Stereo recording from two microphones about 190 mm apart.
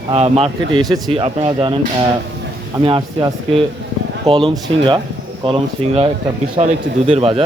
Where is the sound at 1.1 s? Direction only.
30° right (ahead or behind).